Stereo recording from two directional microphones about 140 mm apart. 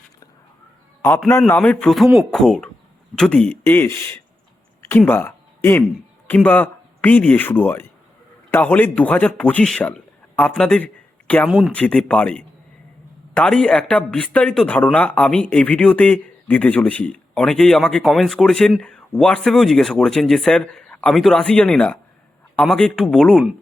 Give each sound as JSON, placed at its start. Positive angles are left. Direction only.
{"t": 1.0, "sound": "a man's voice", "side_deg": 20}
{"t": 4.8, "sound": "a sound", "side_deg": 15}
{"t": 6.2, "sound": "a man's voice", "side_deg": 10}
{"t": 11.4, "sound": "speech", "side_deg": -5}
{"t": 11.7, "sound": "speech", "side_deg": 10}